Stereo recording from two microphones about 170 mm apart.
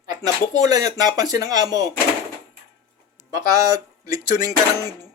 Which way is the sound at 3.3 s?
20° right (ahead or behind).